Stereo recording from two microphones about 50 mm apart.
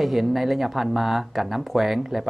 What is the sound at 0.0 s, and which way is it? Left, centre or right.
Speech, centre.